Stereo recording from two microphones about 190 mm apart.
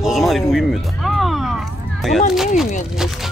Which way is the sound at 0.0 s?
Centre (ahead or behind).